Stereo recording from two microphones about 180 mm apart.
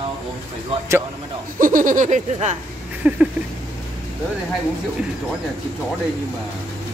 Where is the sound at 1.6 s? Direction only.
45° right (ahead or behind).